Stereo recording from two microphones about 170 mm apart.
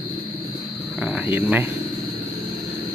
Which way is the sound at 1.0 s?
5° right (ahead or behind).